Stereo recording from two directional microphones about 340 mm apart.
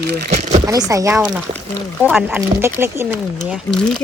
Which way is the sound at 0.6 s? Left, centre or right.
Centre.